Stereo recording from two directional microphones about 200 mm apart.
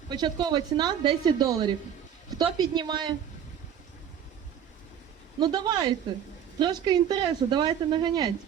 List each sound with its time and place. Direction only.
0.1 s speech: 20° right (ahead or behind)
5.4 s speech: 20° right (ahead or behind)